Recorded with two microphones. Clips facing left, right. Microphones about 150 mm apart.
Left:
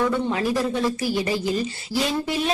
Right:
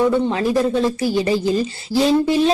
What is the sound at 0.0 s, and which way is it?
A woman's voice, 25° right (ahead or behind).